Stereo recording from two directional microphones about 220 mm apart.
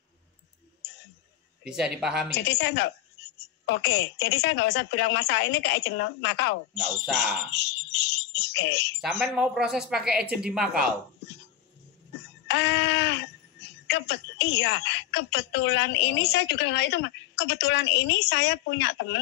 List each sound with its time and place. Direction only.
1.6 s speech: 5° right (ahead or behind)
2.3 s speech: 50° left (ahead or behind)
9.2 s speech: 5° right (ahead or behind)
12.4 s speech: 50° left (ahead or behind)